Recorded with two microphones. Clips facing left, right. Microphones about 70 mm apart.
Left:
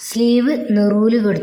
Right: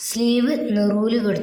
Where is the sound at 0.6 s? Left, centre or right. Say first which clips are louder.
Left 5 dB; left.